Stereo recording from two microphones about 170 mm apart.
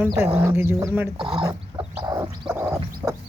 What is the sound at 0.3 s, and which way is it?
Speech, 15° right (ahead or behind).